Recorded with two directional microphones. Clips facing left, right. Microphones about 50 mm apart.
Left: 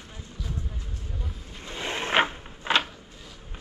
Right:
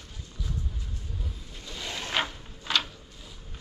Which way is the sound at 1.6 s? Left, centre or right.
Left.